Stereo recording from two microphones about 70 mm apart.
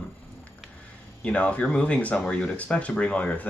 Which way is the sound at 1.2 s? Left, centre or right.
Centre.